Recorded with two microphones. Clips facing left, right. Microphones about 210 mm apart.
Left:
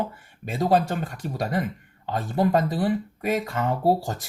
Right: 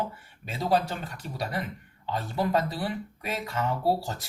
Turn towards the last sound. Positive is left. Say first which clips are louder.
# left 5 dB
turn(degrees=50)  # may be behind; listen again after turning